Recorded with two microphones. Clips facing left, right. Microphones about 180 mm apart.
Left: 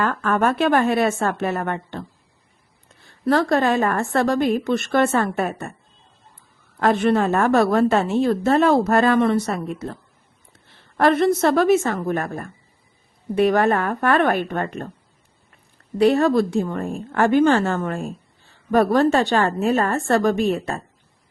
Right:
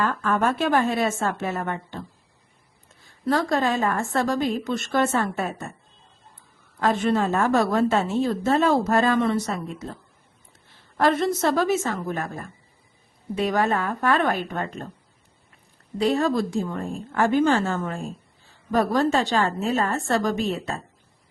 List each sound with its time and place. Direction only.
0.0 s a woman's voice: 60° left (ahead or behind)
3.2 s a woman's voice: 65° left (ahead or behind)
6.7 s a woman's voice: 65° left (ahead or behind)
10.9 s a woman's voice: 60° left (ahead or behind)
16.0 s a woman's voice: 65° left (ahead or behind)